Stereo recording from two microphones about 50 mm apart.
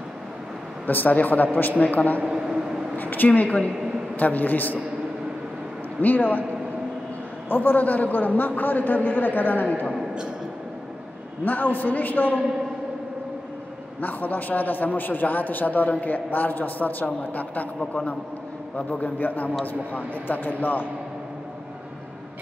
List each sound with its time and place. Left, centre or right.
0.8 s a man's voice: left
2.2 s a sound: centre
3.0 s a man's voice: left
5.9 s a man's voice: left
7.4 s a man's voice: left
11.4 s a man's voice: left
14.0 s a man's voice: left
17.7 s a man's voice: centre
18.8 s a man's voice: left